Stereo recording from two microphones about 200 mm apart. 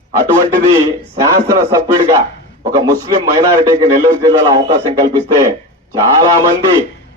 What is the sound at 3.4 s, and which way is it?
Speech, 15° right (ahead or behind).